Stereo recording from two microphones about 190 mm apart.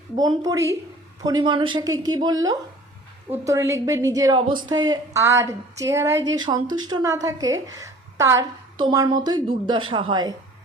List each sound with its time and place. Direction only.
0.2 s a woman's voice: 20° right (ahead or behind)